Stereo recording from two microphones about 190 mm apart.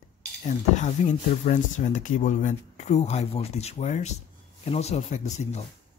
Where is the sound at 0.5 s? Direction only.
35° left (ahead or behind).